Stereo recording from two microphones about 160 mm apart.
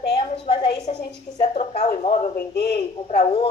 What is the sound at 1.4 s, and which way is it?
Speech, 40° left (ahead or behind).